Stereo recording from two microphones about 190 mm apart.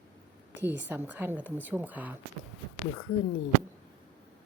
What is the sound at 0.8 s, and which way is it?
Speech, 10° right (ahead or behind).